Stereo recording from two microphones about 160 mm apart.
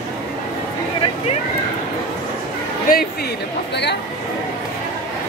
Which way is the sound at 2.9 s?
65° left (ahead or behind).